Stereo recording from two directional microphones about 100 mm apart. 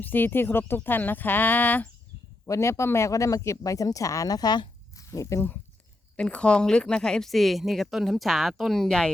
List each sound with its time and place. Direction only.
0.0 s speech: 20° left (ahead or behind)
2.5 s speech: 30° left (ahead or behind)
4.9 s speech: 30° left (ahead or behind)
6.1 s speech: 10° left (ahead or behind)